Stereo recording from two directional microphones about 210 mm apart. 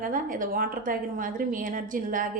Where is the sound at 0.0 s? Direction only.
40° right (ahead or behind).